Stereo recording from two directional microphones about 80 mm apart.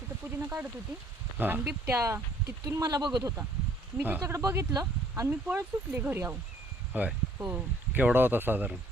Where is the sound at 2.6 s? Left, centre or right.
Right.